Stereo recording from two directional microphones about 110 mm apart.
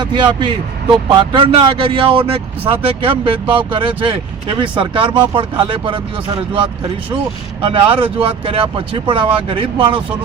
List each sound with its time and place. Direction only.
0.0 s speech: 40° right (ahead or behind)
7.6 s speech: 55° right (ahead or behind)